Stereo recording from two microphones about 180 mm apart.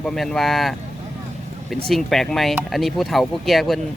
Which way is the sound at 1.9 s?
Centre (ahead or behind).